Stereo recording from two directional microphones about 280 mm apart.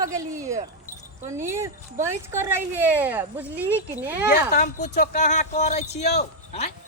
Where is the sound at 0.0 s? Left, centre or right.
Centre.